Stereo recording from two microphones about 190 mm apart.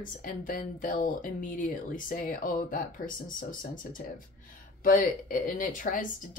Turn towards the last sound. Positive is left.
turn(degrees=45)  # may be behind; listen again after turning